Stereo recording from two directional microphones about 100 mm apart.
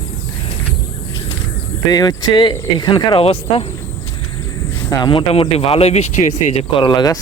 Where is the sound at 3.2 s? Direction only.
75° left (ahead or behind).